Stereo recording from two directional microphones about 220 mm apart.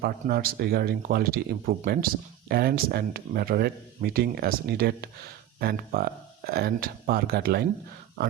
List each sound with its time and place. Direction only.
0.0 s speech: 45° right (ahead or behind)